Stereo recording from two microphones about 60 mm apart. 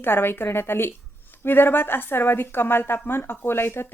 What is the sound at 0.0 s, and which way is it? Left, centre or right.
Speech, left.